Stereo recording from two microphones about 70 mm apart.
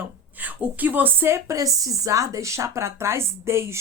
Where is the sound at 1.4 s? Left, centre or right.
Right.